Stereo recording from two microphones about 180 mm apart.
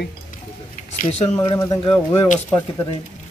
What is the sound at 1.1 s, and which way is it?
Speech, 35° left (ahead or behind).